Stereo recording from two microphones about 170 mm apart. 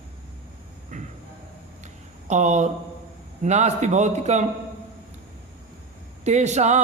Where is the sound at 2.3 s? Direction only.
45° right (ahead or behind).